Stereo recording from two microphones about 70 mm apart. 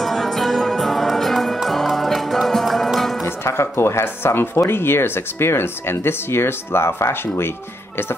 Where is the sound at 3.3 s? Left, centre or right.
Left.